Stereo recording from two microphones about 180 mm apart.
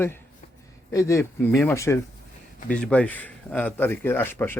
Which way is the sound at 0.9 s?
15° left (ahead or behind).